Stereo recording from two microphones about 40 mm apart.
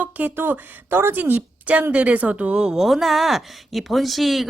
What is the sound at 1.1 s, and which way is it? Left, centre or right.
Speech, right.